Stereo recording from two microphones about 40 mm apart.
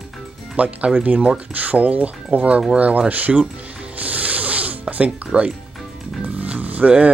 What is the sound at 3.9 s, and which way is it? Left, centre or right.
Music, right.